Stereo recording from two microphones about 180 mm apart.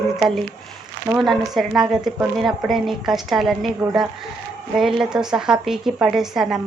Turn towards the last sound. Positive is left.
turn(degrees=0)  # may be behind; listen again after turning